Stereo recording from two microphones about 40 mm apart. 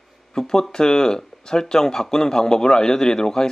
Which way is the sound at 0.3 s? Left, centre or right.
Centre.